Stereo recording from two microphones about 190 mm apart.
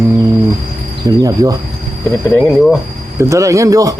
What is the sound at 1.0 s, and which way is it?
Speech, 20° right (ahead or behind).